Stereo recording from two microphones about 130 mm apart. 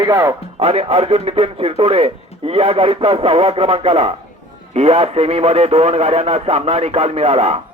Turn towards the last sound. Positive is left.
turn(degrees=-50)  # may be behind; listen again after turning